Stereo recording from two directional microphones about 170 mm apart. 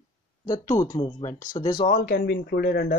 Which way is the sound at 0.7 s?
20° left (ahead or behind).